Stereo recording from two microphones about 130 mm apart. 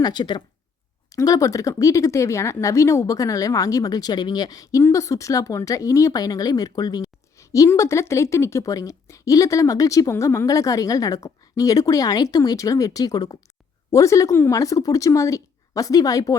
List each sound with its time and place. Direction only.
0.0 s speech: 35° left (ahead or behind)